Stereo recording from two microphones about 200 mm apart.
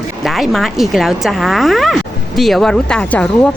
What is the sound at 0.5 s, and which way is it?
A woman's voice, centre (ahead or behind).